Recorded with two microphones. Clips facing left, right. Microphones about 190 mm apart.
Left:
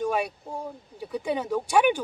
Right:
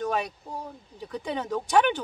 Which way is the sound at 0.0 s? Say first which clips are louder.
Left 2 dB; 10° left (ahead or behind).